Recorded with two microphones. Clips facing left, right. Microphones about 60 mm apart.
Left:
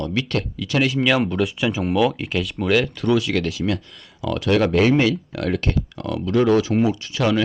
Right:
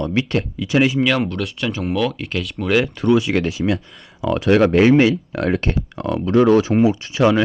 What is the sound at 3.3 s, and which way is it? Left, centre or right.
Speech, centre.